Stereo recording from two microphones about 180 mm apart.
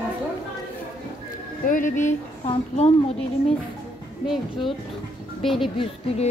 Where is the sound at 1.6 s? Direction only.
45° left (ahead or behind).